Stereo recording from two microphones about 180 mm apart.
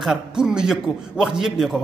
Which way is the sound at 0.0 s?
5° right (ahead or behind).